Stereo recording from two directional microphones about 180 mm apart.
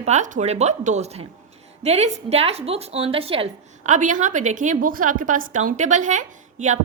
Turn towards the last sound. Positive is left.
turn(degrees=-40)  # may be behind; listen again after turning